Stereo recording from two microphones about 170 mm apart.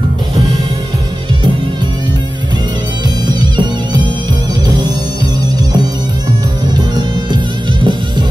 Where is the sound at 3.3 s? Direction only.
25° right (ahead or behind).